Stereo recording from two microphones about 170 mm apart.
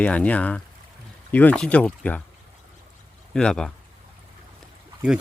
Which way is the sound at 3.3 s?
5° left (ahead or behind).